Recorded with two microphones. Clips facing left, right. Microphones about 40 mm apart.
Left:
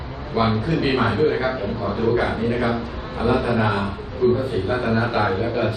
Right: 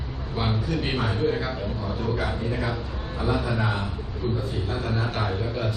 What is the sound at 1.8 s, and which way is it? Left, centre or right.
A man's voice, left.